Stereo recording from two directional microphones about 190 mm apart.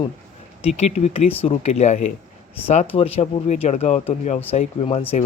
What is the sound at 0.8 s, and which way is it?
Speech, 35° left (ahead or behind).